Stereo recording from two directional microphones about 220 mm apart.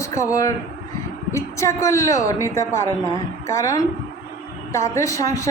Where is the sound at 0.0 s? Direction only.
15° left (ahead or behind).